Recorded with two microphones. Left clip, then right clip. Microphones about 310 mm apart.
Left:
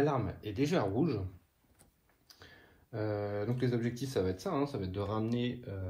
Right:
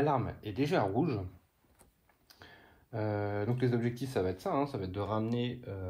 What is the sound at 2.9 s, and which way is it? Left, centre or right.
Speech, right.